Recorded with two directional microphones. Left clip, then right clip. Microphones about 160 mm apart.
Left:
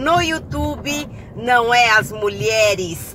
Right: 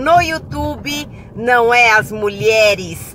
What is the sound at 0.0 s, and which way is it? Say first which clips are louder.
A woman's voice: right 5 dB; 20° right (ahead or behind).